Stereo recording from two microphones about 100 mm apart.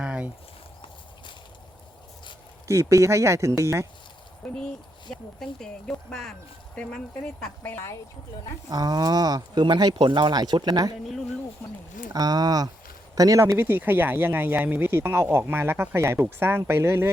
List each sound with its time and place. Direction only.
0.0 s a sound: 10° right (ahead or behind)
2.6 s speech: 30° right (ahead or behind)
4.4 s speech: 5° left (ahead or behind)
8.7 s speech: 40° right (ahead or behind)
12.1 s speech: 40° right (ahead or behind); by 17.1 s 25° right (ahead or behind)